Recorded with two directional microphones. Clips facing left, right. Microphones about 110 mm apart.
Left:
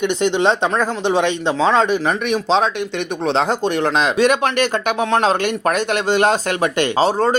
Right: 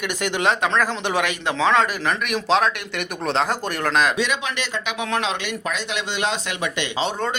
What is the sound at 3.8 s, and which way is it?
Speech, 30° left (ahead or behind).